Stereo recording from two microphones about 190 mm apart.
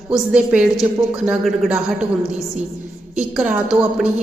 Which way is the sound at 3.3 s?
5° right (ahead or behind).